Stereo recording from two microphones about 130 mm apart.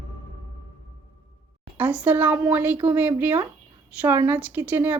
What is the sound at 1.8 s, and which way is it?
A woman's voice, 10° right (ahead or behind).